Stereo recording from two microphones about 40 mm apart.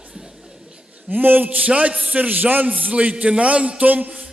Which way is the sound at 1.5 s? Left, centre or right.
Right.